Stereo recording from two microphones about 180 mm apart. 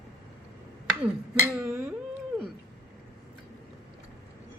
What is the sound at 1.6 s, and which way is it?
Speech, 15° right (ahead or behind).